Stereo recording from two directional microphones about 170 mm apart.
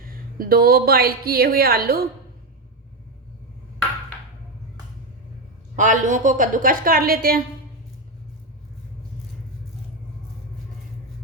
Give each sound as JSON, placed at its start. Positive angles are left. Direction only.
{"t": 0.1, "sound": "a woman's voice", "side_deg": -60}
{"t": 5.7, "sound": "a woman's voice", "side_deg": -50}